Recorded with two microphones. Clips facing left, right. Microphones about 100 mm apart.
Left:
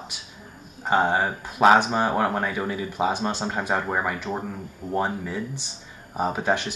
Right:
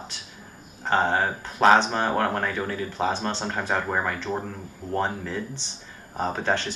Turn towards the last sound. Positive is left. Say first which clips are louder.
# left 2 dB
turn(degrees=15)  # may be behind; listen again after turning